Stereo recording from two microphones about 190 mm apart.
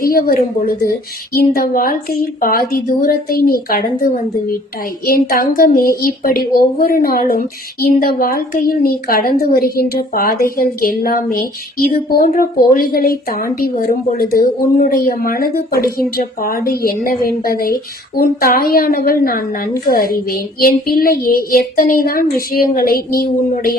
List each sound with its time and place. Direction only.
0.0 s a woman's voice: 50° left (ahead or behind)
5.3 s a woman's voice: 50° left (ahead or behind)